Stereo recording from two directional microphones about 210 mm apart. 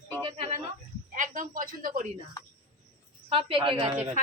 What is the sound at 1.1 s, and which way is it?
Speech, 40° right (ahead or behind).